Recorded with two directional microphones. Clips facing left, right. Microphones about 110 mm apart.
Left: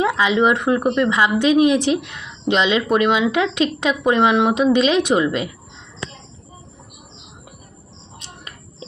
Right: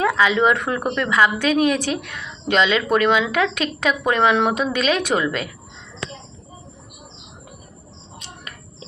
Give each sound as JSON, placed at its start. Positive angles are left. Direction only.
{"t": 0.0, "sound": "speech", "side_deg": 20}